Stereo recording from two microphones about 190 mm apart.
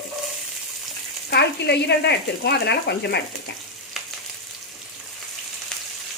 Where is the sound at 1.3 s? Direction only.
60° left (ahead or behind).